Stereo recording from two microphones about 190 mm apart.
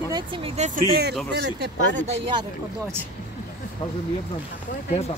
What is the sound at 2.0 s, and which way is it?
Speech, 30° right (ahead or behind).